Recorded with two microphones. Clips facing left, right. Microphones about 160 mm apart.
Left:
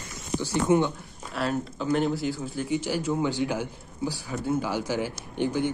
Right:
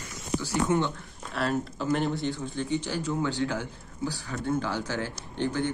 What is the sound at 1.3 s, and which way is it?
A man's voice, centre (ahead or behind).